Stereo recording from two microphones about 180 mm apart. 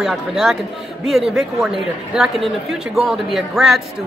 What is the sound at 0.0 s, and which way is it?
A woman's voice, centre (ahead or behind).